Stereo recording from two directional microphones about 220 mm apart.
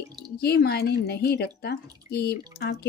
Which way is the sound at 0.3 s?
45° left (ahead or behind).